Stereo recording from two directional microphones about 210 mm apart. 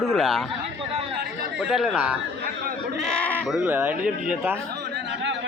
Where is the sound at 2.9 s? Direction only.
5° left (ahead or behind).